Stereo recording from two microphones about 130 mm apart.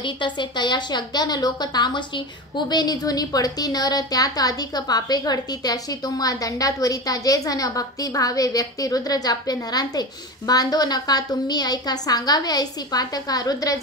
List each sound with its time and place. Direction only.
0.0 s a woman's voice: 35° left (ahead or behind)